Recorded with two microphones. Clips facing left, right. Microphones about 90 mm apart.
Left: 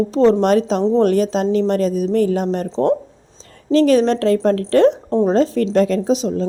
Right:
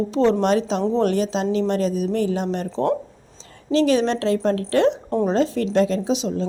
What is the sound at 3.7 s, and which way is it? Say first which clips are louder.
A woman's voice: left 5 dB; 45° left (ahead or behind).